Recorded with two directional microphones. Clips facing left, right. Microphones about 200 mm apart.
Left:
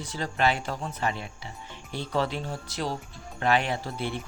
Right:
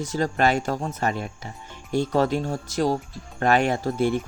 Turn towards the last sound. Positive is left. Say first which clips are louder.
# right 9 dB
turn(degrees=-45)  # may be behind; listen again after turning